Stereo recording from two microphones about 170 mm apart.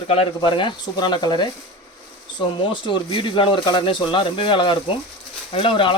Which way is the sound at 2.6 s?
30° left (ahead or behind).